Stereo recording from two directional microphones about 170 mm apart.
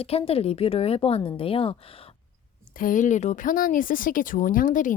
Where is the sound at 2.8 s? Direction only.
50° left (ahead or behind).